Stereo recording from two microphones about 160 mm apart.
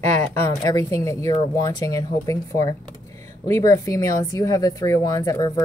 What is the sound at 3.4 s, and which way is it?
A woman's voice, 20° left (ahead or behind).